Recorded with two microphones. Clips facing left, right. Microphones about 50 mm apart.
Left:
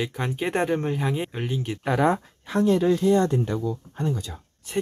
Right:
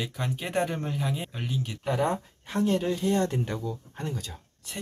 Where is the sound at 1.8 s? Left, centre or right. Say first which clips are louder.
Left 5 dB; left.